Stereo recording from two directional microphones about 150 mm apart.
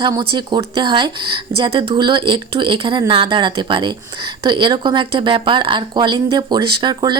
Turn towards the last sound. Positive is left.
turn(degrees=-30)  # may be behind; listen again after turning